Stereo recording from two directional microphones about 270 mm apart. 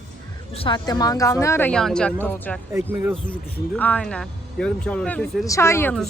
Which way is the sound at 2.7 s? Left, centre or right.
Centre.